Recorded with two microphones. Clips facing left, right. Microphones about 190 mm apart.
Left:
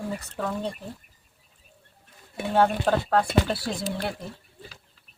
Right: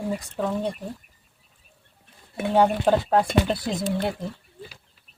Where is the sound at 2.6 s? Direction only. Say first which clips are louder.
Right 2 dB; 15° right (ahead or behind).